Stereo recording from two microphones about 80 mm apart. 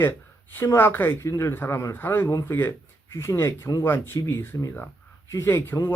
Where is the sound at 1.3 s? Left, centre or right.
Left.